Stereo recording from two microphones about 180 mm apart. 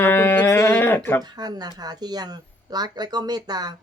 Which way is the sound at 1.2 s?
20° right (ahead or behind).